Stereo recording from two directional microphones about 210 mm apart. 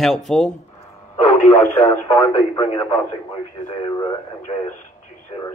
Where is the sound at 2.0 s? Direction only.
20° left (ahead or behind).